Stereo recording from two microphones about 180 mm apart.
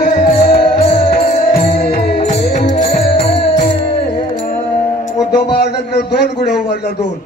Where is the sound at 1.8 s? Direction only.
35° left (ahead or behind).